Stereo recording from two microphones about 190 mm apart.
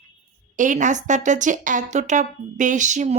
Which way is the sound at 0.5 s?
40° right (ahead or behind).